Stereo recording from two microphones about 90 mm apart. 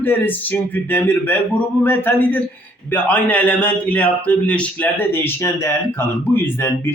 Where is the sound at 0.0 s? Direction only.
20° left (ahead or behind).